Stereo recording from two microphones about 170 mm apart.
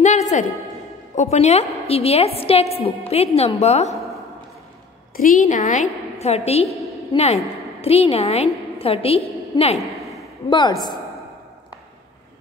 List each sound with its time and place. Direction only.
0.0 s a sound: 45° left (ahead or behind)
1.1 s a woman's voice: 40° left (ahead or behind)
5.1 s a woman's voice: 55° left (ahead or behind); by 6.7 s 35° left (ahead or behind)
7.8 s a woman's voice: 35° left (ahead or behind)
10.5 s a woman's voice: 25° left (ahead or behind)